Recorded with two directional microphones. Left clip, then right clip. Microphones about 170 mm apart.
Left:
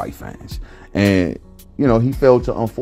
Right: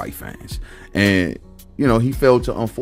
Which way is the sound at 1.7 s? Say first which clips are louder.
Left 2 dB; 30° right (ahead or behind).